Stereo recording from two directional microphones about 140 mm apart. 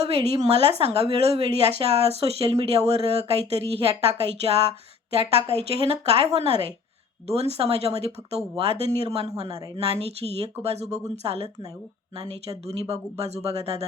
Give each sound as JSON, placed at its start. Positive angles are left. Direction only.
{"t": 0.0, "sound": "speech", "side_deg": -45}
{"t": 5.7, "sound": "speech", "side_deg": -45}
{"t": 12.6, "sound": "speech", "side_deg": -45}